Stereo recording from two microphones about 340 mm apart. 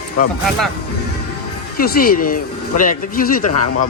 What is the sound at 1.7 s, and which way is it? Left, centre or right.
Speech, left.